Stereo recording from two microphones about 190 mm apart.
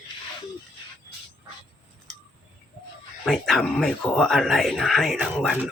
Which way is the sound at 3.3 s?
Centre (ahead or behind).